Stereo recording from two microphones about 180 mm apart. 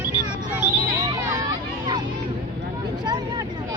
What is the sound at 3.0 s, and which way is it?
Vehicle, 25° right (ahead or behind).